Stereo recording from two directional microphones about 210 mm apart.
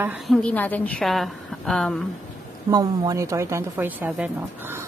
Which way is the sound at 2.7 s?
20° right (ahead or behind).